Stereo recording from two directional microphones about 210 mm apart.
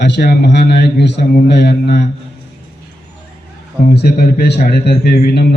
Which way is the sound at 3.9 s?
50° left (ahead or behind).